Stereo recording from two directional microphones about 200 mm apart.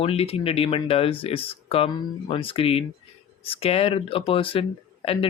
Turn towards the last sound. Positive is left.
turn(degrees=30)  # may be behind; listen again after turning